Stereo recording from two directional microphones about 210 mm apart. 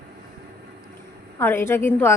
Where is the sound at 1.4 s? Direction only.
10° left (ahead or behind).